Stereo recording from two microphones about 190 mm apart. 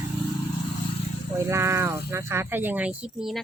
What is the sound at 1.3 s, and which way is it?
Speech, 15° right (ahead or behind).